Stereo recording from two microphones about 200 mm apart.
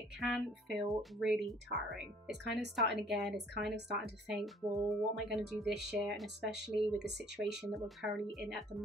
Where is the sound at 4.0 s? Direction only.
Centre (ahead or behind).